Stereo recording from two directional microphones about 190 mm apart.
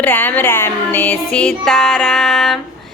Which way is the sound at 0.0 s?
10° left (ahead or behind).